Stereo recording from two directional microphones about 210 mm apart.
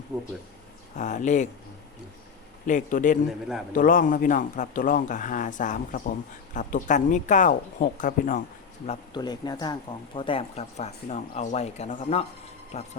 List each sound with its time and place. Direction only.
0.9 s speech: 35° left (ahead or behind)
2.6 s speech: 35° left (ahead or behind)
8.9 s speech: 20° left (ahead or behind)